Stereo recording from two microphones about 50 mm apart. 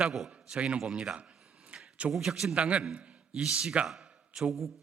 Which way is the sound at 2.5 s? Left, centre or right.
Right.